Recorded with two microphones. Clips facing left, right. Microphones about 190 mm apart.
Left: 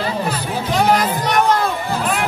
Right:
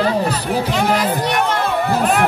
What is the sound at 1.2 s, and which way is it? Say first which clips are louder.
Crowd: left 2 dB; 40° left (ahead or behind).